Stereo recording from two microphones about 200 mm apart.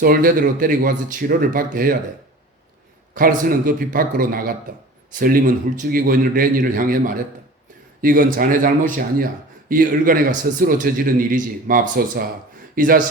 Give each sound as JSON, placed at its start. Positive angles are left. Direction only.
{"t": 0.0, "sound": "a man's voice", "side_deg": -45}
{"t": 3.2, "sound": "a man's voice", "side_deg": -45}